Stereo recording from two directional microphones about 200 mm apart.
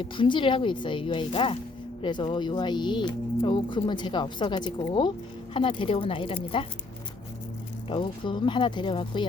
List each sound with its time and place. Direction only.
0.0 s speech: 25° left (ahead or behind)
7.9 s speech: 25° left (ahead or behind)